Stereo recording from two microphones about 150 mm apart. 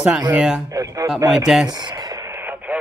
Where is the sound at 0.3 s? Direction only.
5° right (ahead or behind).